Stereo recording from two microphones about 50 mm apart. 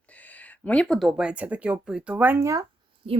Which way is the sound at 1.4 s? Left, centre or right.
Right.